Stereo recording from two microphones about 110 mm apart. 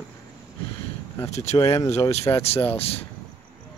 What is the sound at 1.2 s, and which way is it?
Speech, 90° left.